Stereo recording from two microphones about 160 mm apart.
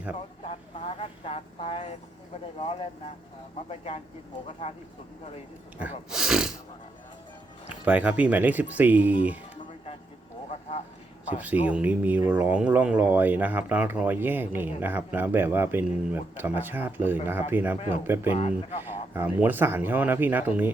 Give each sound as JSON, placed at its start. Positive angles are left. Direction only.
{"t": 0.4, "sound": "speech", "side_deg": 40}
{"t": 3.7, "sound": "speech", "side_deg": 40}
{"t": 5.7, "sound": "speech", "side_deg": -5}
{"t": 7.9, "sound": "speech", "side_deg": -10}
{"t": 10.5, "sound": "vehicle", "side_deg": 40}
{"t": 11.4, "sound": "speech", "side_deg": -10}
{"t": 17.7, "sound": "speech", "side_deg": 35}
{"t": 18.0, "sound": "speech", "side_deg": -15}
{"t": 18.3, "sound": "speech", "side_deg": 40}
{"t": 18.8, "sound": "speech", "side_deg": -15}